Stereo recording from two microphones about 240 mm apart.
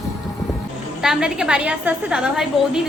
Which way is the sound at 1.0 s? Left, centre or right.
Centre.